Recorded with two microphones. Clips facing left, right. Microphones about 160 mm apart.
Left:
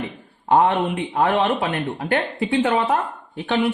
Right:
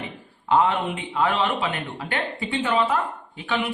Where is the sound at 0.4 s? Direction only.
45° left (ahead or behind).